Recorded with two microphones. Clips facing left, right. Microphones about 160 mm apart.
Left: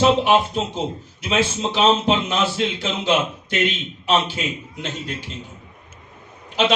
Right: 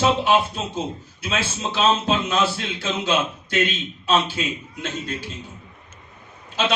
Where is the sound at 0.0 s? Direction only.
15° left (ahead or behind).